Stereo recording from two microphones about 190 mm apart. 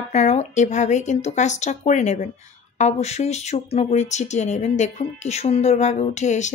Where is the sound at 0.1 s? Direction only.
35° left (ahead or behind).